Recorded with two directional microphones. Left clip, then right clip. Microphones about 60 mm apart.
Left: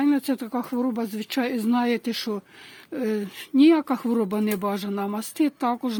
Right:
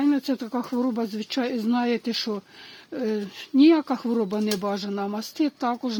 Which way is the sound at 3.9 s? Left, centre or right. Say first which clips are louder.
Left 1 dB; left.